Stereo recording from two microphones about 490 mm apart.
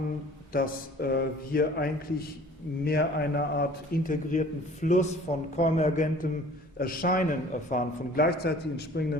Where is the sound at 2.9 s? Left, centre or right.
Centre.